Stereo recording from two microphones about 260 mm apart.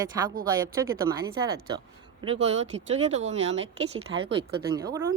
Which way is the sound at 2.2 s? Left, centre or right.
Right.